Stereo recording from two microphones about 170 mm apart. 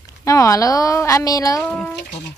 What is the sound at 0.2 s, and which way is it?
A woman's voice, 20° left (ahead or behind).